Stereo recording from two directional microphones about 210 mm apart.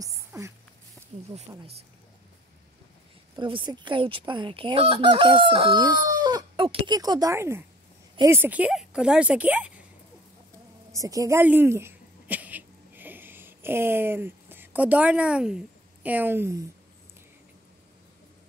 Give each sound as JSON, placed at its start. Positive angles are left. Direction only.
{"t": 0.0, "sound": "a sound", "side_deg": -15}
{"t": 1.1, "sound": "snake", "side_deg": -35}
{"t": 1.5, "sound": "speech", "side_deg": -15}
{"t": 3.3, "sound": "fowl", "side_deg": -25}
{"t": 8.2, "sound": "speech", "side_deg": -10}
{"t": 11.0, "sound": "a sound", "side_deg": -15}